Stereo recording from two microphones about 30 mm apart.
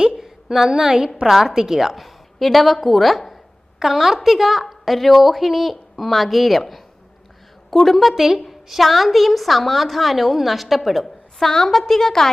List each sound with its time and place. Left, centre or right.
0.2 s a woman's voice: centre
1.3 s a woman's voice: centre
2.0 s speech: centre
3.8 s a woman's voice: centre
7.7 s a woman's voice: centre
11.0 s a sound: centre
11.5 s speech: centre